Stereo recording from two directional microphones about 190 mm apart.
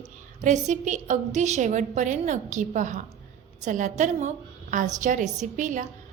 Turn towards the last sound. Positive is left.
turn(degrees=-40)  # may be behind; listen again after turning